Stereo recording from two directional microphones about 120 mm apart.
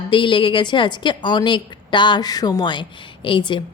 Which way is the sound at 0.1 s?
45° left (ahead or behind).